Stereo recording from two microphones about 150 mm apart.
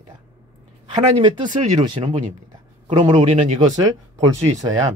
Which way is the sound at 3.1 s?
50° right (ahead or behind).